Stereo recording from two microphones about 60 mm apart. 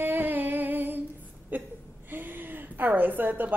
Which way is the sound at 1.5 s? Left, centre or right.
Right.